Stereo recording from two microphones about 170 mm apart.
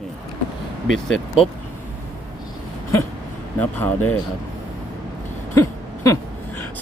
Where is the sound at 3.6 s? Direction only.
10° left (ahead or behind).